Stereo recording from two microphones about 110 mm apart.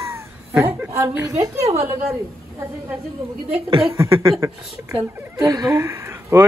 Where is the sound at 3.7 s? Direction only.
55° right (ahead or behind).